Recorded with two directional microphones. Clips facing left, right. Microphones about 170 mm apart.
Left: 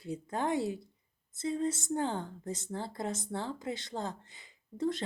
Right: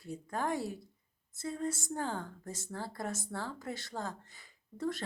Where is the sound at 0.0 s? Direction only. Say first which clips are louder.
Left 2 dB; 20° left (ahead or behind).